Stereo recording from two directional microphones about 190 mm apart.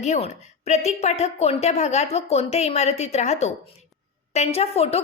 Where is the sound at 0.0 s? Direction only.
35° left (ahead or behind).